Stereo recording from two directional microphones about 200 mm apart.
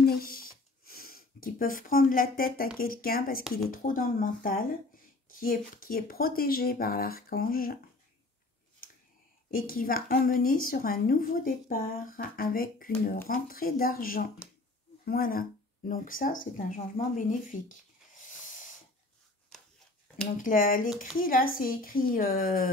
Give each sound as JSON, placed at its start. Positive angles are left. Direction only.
{"t": 0.0, "sound": "a woman's voice", "side_deg": 50}
{"t": 9.5, "sound": "a woman's voice", "side_deg": 45}
{"t": 20.4, "sound": "a woman's voice", "side_deg": 45}